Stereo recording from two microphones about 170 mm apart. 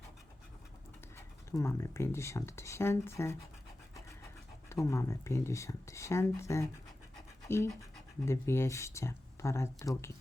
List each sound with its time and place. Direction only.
1.1 s speech: 15° left (ahead or behind)
4.7 s speech: 20° left (ahead or behind)